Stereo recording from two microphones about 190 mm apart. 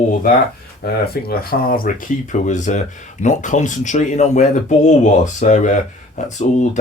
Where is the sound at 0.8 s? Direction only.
55° left (ahead or behind).